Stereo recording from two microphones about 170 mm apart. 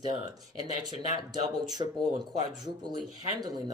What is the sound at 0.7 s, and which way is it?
Speech, 25° right (ahead or behind).